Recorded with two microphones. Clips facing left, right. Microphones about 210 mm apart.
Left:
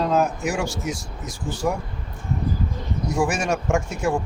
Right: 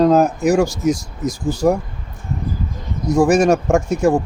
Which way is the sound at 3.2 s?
40° right (ahead or behind).